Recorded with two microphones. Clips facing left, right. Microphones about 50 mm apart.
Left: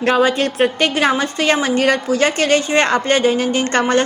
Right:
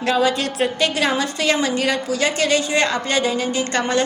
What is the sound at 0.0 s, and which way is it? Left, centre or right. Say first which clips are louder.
A woman's voice: left 4 dB; left.